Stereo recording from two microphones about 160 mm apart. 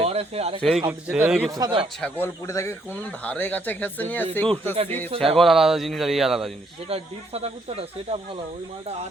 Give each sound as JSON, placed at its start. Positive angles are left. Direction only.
{"t": 0.0, "sound": "speech", "side_deg": -40}
{"t": 0.9, "sound": "a man's voice", "side_deg": -10}
{"t": 1.5, "sound": "speech", "side_deg": -25}
{"t": 2.0, "sound": "speech", "side_deg": 10}
{"t": 5.1, "sound": "speech", "side_deg": -35}
{"t": 5.4, "sound": "speech", "side_deg": 0}
{"t": 6.8, "sound": "speech", "side_deg": -40}